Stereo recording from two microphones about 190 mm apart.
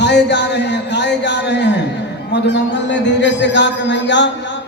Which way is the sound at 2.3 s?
65° left (ahead or behind).